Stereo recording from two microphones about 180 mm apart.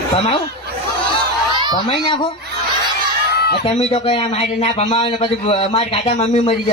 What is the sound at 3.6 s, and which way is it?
A man's voice, 30° left (ahead or behind).